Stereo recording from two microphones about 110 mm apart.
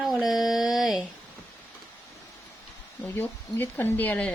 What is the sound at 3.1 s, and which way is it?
Speech, 20° left (ahead or behind).